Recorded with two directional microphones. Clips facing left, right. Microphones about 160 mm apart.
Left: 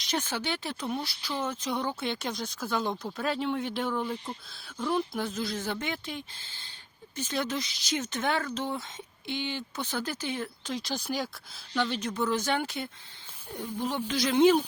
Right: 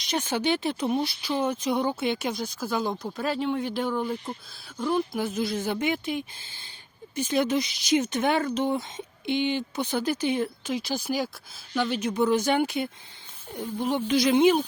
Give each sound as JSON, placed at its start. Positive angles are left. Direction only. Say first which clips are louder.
{"t": 0.1, "sound": "a woman's voice", "louder": "right 6 dB", "side_deg": -15}
{"t": 10.8, "sound": "a woman's voice", "louder": "right 4 dB", "side_deg": -5}